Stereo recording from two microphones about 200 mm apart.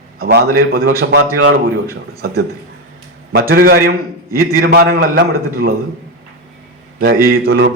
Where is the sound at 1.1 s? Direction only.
70° right (ahead or behind).